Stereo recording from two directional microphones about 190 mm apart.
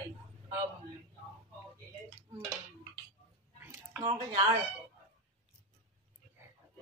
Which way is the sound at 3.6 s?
10° right (ahead or behind).